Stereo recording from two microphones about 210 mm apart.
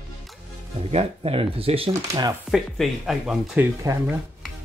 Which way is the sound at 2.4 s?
Centre (ahead or behind).